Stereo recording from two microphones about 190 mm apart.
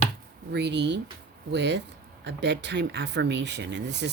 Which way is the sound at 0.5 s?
65° right (ahead or behind).